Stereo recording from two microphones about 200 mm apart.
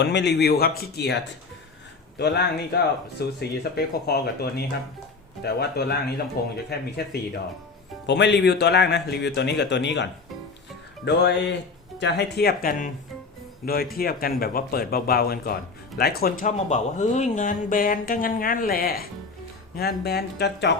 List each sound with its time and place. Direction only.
0.0 s speech: 60° left (ahead or behind)
13.9 s speech: 50° left (ahead or behind)
16.5 s speech: 35° left (ahead or behind); by 20.7 s 55° left (ahead or behind)